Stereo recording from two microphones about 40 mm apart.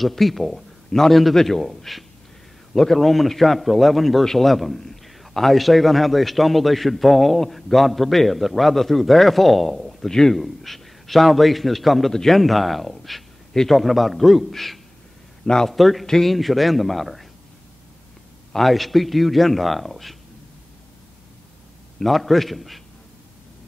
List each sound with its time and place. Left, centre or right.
0.0 s a man's voice: centre
12.4 s a man's voice: centre
15.4 s speech: centre
15.7 s a man's voice: centre
18.5 s a man's voice: centre
22.0 s a man's voice: centre